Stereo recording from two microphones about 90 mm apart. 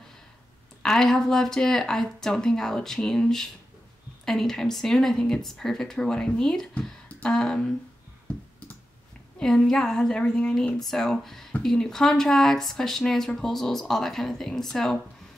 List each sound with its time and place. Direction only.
0.8 s speech: 5° left (ahead or behind)
8.3 s clicking: 15° left (ahead or behind)
9.4 s speech: 5° left (ahead or behind)